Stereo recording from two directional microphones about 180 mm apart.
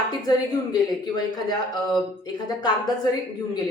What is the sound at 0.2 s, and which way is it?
A woman's voice, 20° left (ahead or behind).